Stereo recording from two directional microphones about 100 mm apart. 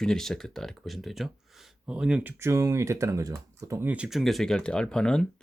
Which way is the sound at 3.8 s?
10° right (ahead or behind).